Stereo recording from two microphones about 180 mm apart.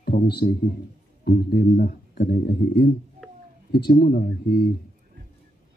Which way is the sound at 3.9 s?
50° left (ahead or behind).